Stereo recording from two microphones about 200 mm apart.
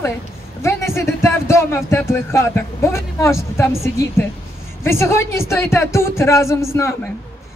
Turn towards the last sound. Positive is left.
turn(degrees=15)  # may be behind; listen again after turning